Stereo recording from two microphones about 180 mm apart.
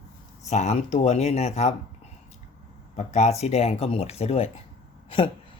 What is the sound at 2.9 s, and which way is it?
Speech, 40° left (ahead or behind).